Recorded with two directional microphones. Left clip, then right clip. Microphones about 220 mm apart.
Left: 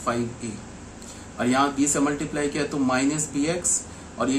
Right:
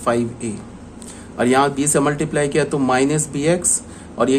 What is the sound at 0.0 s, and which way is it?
Speech, 45° right (ahead or behind).